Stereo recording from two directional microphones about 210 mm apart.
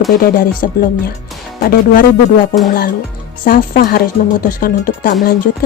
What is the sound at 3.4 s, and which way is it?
Speech, 40° left (ahead or behind).